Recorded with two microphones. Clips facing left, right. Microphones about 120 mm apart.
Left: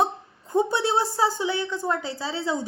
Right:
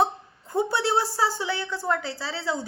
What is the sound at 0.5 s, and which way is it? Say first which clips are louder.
A woman's voice: left 1 dB; 20° left (ahead or behind).